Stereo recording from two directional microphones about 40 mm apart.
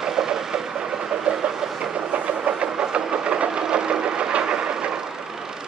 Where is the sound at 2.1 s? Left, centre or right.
Right.